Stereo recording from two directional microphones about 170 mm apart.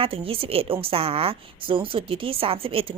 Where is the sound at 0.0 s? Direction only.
30° right (ahead or behind).